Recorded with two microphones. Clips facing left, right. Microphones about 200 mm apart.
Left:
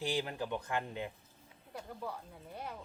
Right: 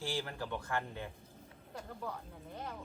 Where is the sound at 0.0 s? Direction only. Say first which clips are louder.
Left 3 dB; 20° left (ahead or behind).